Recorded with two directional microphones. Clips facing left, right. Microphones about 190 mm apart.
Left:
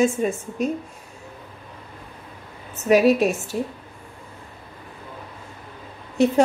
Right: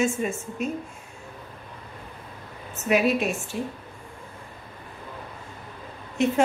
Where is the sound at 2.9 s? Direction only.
40° left (ahead or behind).